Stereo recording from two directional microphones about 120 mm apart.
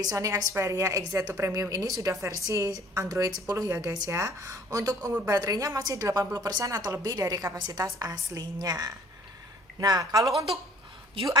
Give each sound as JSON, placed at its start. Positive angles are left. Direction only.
{"t": 0.0, "sound": "a woman's voice", "side_deg": -30}
{"t": 11.1, "sound": "a woman's voice", "side_deg": -50}